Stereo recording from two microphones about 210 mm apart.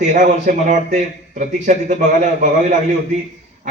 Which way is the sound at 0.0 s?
35° right (ahead or behind).